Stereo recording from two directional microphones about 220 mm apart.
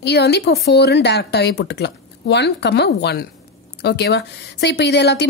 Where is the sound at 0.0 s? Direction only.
50° left (ahead or behind).